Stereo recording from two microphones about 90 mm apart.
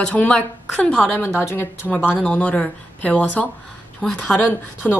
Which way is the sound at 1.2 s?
25° left (ahead or behind).